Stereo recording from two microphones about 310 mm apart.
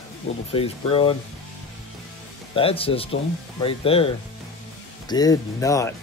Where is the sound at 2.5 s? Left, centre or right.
Centre.